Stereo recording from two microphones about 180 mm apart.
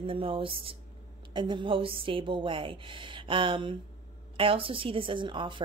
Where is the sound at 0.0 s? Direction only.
30° right (ahead or behind).